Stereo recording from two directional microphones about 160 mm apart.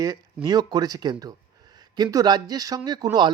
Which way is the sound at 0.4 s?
25° right (ahead or behind).